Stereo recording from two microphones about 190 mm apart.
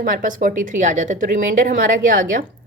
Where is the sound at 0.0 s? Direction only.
45° right (ahead or behind).